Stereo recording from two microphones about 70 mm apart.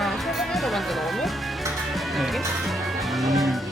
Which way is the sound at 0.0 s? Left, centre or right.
Centre.